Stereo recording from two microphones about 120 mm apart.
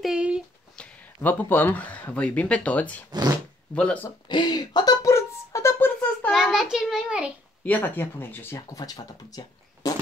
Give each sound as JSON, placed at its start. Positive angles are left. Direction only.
{"t": 0.0, "sound": "a sound", "side_deg": -5}
{"t": 0.7, "sound": "speech", "side_deg": 10}
{"t": 3.1, "sound": "speech", "side_deg": -35}
{"t": 3.7, "sound": "speech", "side_deg": 10}
{"t": 4.3, "sound": "speech", "side_deg": 40}
{"t": 5.0, "sound": "music", "side_deg": 25}
{"t": 6.3, "sound": "a sound", "side_deg": -5}
{"t": 7.6, "sound": "speech", "side_deg": 15}